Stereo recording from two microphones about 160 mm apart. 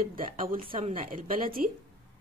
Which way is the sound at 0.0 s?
60° right (ahead or behind).